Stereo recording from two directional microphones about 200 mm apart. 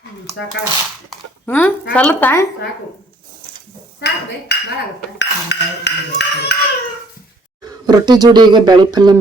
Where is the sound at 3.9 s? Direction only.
60° left (ahead or behind).